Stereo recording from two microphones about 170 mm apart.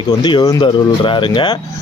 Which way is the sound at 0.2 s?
25° left (ahead or behind).